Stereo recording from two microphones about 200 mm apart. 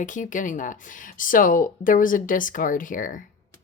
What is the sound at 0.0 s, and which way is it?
Speech, 40° left (ahead or behind).